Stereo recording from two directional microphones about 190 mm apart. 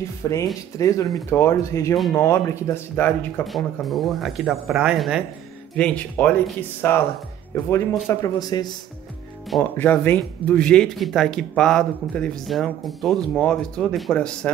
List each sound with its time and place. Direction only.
0.2 s speech: 15° left (ahead or behind)
3.4 s speech: centre (ahead or behind)
8.1 s speech: 20° left (ahead or behind)
9.5 s speech: 10° left (ahead or behind)